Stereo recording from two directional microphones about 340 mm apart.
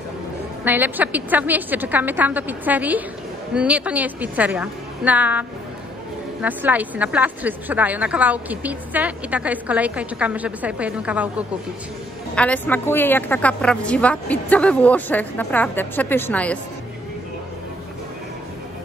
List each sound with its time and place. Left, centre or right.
0.7 s speech: centre